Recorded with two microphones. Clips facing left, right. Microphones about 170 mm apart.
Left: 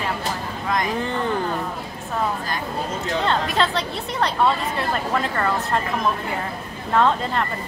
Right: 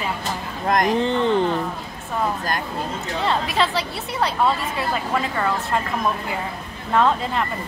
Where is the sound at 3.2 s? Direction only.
5° right (ahead or behind).